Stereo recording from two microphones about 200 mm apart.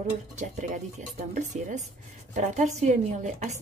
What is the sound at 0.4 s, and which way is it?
A woman's voice, 35° right (ahead or behind).